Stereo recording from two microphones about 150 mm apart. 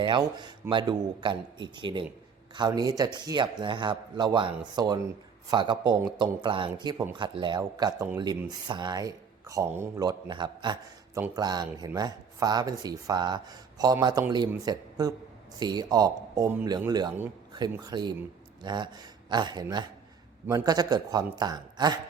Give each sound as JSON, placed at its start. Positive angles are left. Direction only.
{"t": 0.0, "sound": "speech", "side_deg": -30}